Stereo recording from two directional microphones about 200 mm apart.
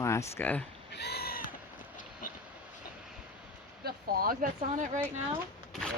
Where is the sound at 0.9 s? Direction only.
55° left (ahead or behind).